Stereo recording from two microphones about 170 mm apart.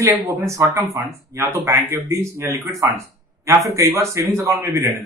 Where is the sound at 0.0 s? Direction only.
15° right (ahead or behind).